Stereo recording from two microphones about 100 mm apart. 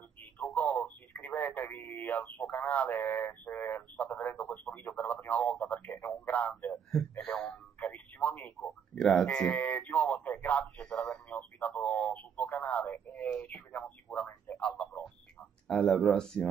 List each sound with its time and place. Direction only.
0.2 s telephone: 15° left (ahead or behind)
1.2 s speech: 15° left (ahead or behind)
2.9 s a sound: 25° left (ahead or behind)
3.2 s speech: 15° left (ahead or behind)
6.9 s speech: 5° left (ahead or behind)
10.6 s radio: 10° left (ahead or behind)
14.5 s a sound: 5° left (ahead or behind)
15.7 s speech: 5° left (ahead or behind)